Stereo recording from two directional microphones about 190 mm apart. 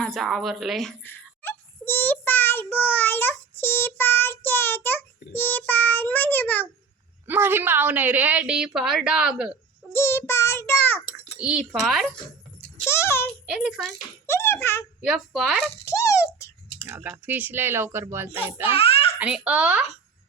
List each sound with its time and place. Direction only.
0.0 s a woman's voice: centre (ahead or behind)
7.3 s a woman's voice: 10° right (ahead or behind)
9.9 s child singing: 15° left (ahead or behind)
11.3 s speech: 5° right (ahead or behind)
12.8 s a sound: 15° left (ahead or behind)
13.5 s speech: 5° right (ahead or behind)
14.3 s speech: 10° left (ahead or behind)
15.0 s speech: centre (ahead or behind)
15.8 s a sound: 15° left (ahead or behind)
16.8 s a woman's voice: 10° right (ahead or behind)
18.8 s babbling: 30° left (ahead or behind)
19.2 s a woman's voice: 5° right (ahead or behind)